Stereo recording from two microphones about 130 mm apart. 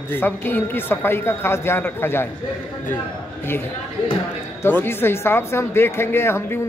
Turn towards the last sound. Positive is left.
turn(degrees=20)  # may be behind; listen again after turning